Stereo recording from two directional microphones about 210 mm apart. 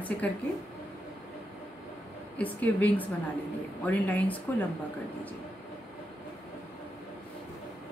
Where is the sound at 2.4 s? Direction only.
5° left (ahead or behind).